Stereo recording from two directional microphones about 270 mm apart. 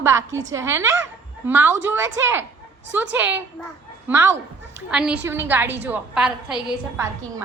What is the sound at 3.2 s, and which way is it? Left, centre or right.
A woman's voice, centre.